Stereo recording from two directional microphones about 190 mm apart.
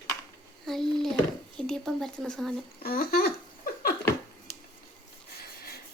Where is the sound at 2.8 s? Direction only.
55° left (ahead or behind).